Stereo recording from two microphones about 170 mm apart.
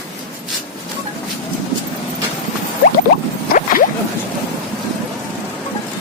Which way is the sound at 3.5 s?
55° left (ahead or behind).